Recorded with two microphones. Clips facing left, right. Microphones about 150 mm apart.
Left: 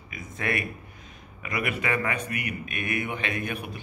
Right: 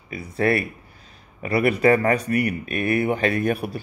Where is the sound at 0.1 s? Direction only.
35° right (ahead or behind).